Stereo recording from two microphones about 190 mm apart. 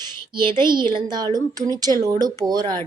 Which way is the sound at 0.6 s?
25° right (ahead or behind).